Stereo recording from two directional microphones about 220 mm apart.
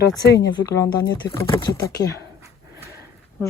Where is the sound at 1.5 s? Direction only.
15° left (ahead or behind).